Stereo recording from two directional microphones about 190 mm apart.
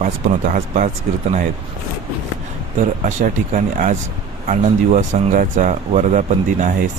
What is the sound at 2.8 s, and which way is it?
Speech, 40° right (ahead or behind).